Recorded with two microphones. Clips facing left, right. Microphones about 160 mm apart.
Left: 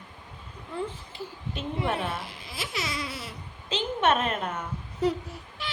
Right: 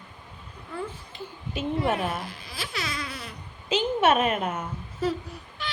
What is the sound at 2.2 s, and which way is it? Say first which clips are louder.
Speech: right 1 dB; 25° left (ahead or behind).